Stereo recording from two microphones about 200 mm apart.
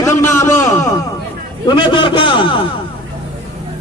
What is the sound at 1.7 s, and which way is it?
Speech, 25° left (ahead or behind).